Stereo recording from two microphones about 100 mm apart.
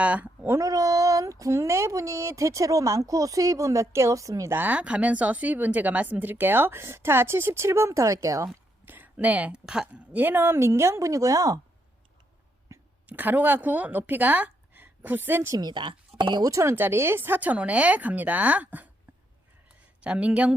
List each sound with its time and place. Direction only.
0.0 s speech: 15° right (ahead or behind)
0.6 s speech: 35° right (ahead or behind)
4.5 s speech: 15° right (ahead or behind); by 8.4 s 35° right (ahead or behind)
8.9 s speech: 15° right (ahead or behind); by 11.6 s 35° right (ahead or behind)
12.7 s a sound: 30° right (ahead or behind)
13.1 s a woman's voice: 15° right (ahead or behind)
15.5 s speech: 45° right (ahead or behind)
16.5 s speech: 30° right (ahead or behind)
20.0 s speech: 10° right (ahead or behind)